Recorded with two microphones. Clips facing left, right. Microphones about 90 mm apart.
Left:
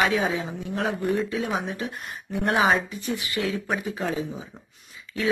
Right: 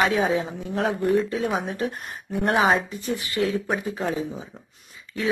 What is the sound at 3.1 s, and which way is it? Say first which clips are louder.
Speech: right 4 dB; 35° right (ahead or behind).